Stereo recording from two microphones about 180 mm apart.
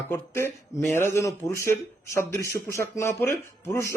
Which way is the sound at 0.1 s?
15° left (ahead or behind).